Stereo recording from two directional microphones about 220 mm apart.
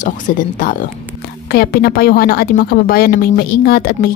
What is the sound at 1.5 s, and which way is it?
A woman's voice, 45° left (ahead or behind).